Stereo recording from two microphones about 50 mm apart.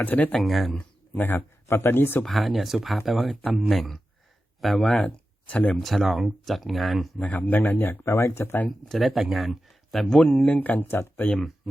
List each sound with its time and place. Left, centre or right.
0.0 s speech: left
0.3 s speech: centre
1.1 s speech: left
1.6 s speech: left
2.2 s speech: centre
5.0 s a sound: left
5.8 s speech: centre
7.2 s speech: left
8.0 s speech: left
8.9 s speech: centre
10.4 s speech: left
10.8 s speech: left